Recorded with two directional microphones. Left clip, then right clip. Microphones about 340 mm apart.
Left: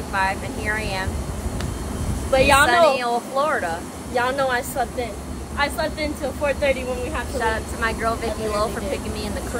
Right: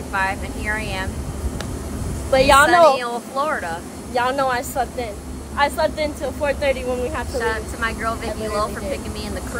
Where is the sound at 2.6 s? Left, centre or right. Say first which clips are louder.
Right 3 dB; centre.